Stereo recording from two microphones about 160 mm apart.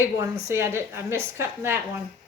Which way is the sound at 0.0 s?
15° right (ahead or behind).